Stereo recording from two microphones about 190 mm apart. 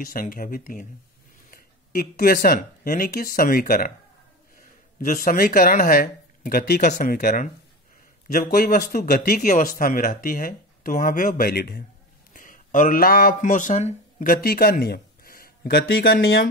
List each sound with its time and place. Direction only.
0.0 s speech: 45° left (ahead or behind)
5.0 s speech: 45° left (ahead or behind)
16.2 s speech: 85° left